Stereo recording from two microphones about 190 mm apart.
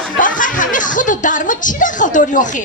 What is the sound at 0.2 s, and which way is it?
Chuckle, 45° left (ahead or behind).